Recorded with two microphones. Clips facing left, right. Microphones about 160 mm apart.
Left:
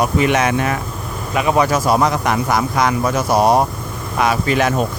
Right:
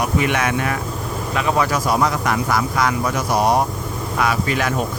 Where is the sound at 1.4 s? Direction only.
15° left (ahead or behind).